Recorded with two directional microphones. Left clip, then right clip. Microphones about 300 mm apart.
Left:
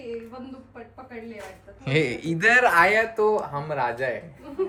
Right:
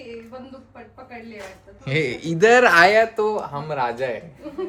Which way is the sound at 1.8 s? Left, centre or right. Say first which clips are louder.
Right 1 dB; centre.